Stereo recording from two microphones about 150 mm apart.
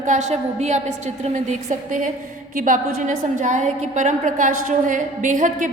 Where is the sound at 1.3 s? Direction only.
55° right (ahead or behind).